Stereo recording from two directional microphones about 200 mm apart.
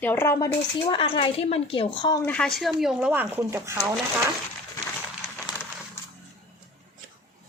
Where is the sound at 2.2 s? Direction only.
5° left (ahead or behind); by 3.8 s 10° right (ahead or behind).